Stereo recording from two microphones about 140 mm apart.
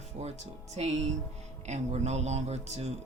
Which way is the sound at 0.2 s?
50° right (ahead or behind).